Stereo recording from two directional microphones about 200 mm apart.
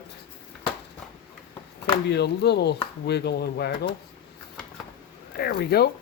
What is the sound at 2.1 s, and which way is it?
Speech, 55° left (ahead or behind).